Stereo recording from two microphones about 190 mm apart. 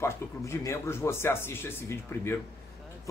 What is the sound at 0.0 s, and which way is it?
Speech, 15° left (ahead or behind).